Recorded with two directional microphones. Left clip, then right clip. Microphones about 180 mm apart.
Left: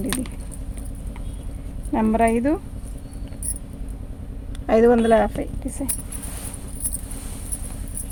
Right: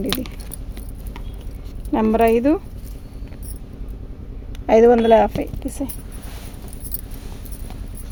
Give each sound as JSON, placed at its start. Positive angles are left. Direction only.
{"t": 0.0, "sound": "keys jangling", "side_deg": -50}
{"t": 1.9, "sound": "a woman's voice", "side_deg": -60}
{"t": 4.6, "sound": "speech", "side_deg": -35}
{"t": 5.4, "sound": "speech", "side_deg": -50}